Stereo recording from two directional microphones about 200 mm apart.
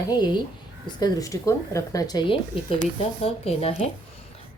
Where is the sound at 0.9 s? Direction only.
20° left (ahead or behind).